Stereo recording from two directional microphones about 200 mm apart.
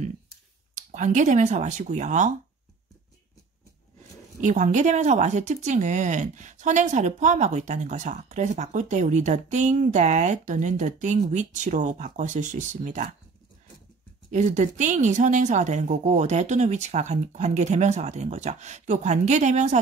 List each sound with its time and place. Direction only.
0.7 s speech: 40° right (ahead or behind)
4.4 s speech: 40° right (ahead or behind)
14.3 s speech: 40° right (ahead or behind)